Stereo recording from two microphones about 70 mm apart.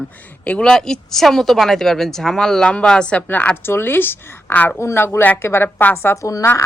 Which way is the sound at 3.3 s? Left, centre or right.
Left.